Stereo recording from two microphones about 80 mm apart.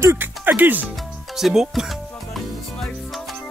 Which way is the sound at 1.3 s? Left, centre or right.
Centre.